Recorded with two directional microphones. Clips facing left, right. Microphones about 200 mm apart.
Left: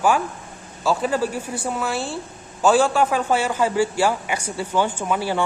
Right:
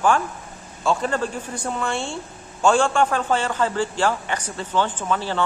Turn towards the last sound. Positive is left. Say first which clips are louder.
# left 2 dB
turn(degrees=10)  # may be behind; listen again after turning